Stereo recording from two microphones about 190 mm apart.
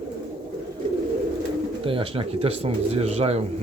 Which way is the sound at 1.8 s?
30° right (ahead or behind).